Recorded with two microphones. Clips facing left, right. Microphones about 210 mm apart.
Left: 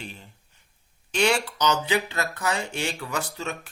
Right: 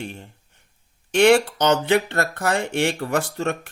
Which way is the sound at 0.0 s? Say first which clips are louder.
Right 7 dB; 55° right (ahead or behind).